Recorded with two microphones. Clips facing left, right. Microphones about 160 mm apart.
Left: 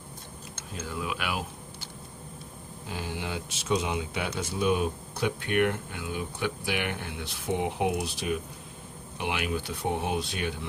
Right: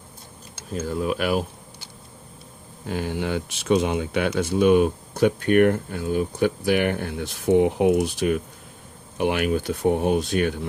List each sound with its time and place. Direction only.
0.8 s speech: 40° right (ahead or behind)
2.8 s speech: 55° right (ahead or behind)